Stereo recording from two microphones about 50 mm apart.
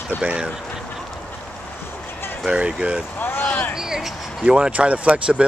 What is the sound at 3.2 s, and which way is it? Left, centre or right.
Speech, left.